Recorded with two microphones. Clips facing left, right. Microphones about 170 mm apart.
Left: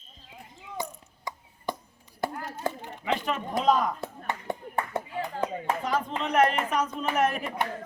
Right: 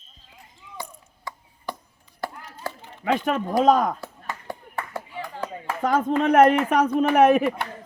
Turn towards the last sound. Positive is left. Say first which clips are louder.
# right 10 dB
turn(degrees=-65)  # may be behind; listen again after turning